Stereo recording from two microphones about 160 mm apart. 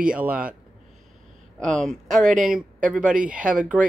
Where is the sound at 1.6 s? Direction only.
5° left (ahead or behind).